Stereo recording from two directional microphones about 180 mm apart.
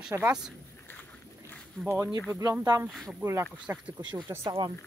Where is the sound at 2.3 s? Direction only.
15° right (ahead or behind).